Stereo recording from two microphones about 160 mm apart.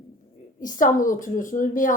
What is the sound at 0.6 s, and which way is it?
A woman's voice, 55° left (ahead or behind).